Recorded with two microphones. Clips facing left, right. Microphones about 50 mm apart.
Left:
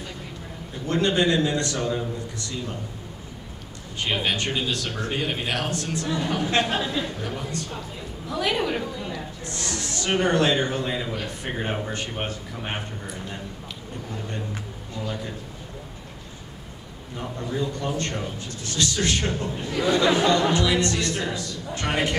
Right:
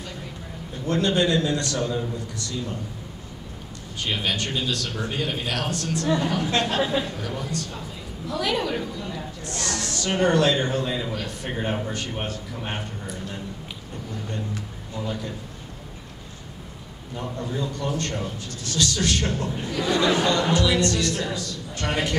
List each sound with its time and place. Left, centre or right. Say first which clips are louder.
0.8 s speech: even; left
4.0 s speech: left 1 dB; left
6.8 s speech: right 3 dB; centre
7.2 s speech: right 1 dB; centre
17.6 s speech: left 1 dB; left